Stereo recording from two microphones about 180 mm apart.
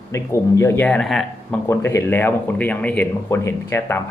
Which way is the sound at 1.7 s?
15° left (ahead or behind).